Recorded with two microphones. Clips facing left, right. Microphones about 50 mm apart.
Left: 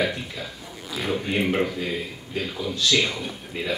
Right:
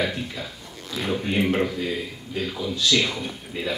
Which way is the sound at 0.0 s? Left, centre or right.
Centre.